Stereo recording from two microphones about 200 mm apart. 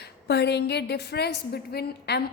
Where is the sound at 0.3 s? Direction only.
55° left (ahead or behind).